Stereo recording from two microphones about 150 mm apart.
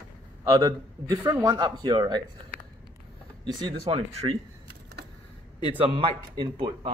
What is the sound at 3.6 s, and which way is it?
Speech, 35° right (ahead or behind).